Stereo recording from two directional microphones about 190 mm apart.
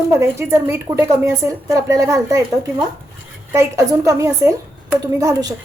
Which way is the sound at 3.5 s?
15° right (ahead or behind).